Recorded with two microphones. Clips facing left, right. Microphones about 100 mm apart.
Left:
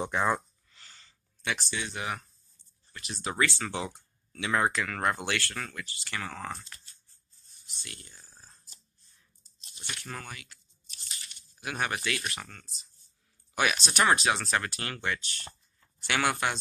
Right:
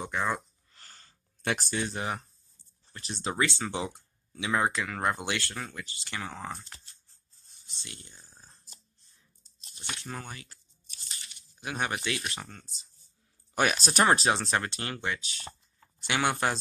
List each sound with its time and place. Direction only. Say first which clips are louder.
0.0 s speech: left 3 dB; 20° left (ahead or behind)
0.7 s a sound: right 1 dB; 40° right (ahead or behind)
2.9 s speech: right 2 dB; 30° right (ahead or behind); by 6.6 s 15° right (ahead or behind)
7.6 s a sound: even; 25° right (ahead or behind)
9.9 s speech: even; 25° right (ahead or behind)
11.6 s speech: even; 20° right (ahead or behind)
13.6 s speech: right 2 dB; 40° right (ahead or behind); by 15.1 s 20° right (ahead or behind)
15.1 s speech: even; centre (ahead or behind)
16.0 s speech: even; 20° right (ahead or behind)